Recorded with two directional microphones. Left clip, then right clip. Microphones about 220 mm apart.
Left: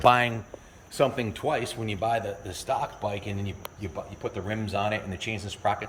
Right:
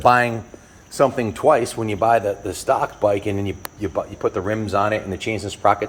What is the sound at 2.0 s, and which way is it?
Speech, 40° right (ahead or behind).